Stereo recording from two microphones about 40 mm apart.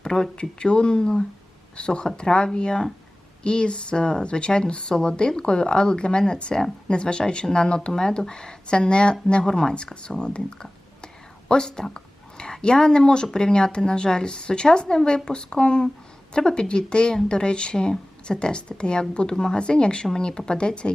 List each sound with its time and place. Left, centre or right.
0.0 s speech: left